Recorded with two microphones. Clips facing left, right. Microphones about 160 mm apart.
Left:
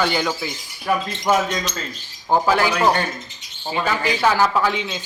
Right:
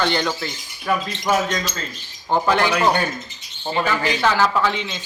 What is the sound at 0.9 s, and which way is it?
Speech, 20° left (ahead or behind).